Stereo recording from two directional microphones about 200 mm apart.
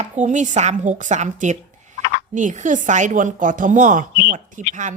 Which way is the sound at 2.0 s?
65° left (ahead or behind).